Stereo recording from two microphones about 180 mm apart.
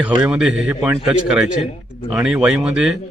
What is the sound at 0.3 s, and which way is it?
A man's voice, 5° right (ahead or behind).